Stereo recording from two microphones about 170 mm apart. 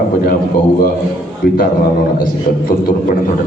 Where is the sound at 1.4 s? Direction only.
60° left (ahead or behind).